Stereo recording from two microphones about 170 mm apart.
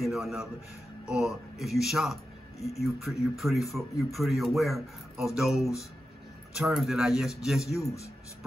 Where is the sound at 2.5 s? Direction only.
40° left (ahead or behind).